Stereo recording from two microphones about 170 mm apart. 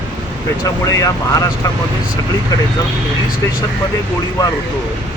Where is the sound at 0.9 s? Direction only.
20° left (ahead or behind).